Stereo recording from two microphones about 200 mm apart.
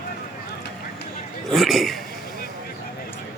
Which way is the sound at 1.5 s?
Centre (ahead or behind).